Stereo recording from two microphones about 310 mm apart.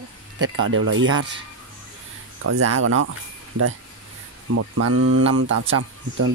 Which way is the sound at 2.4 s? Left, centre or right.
Right.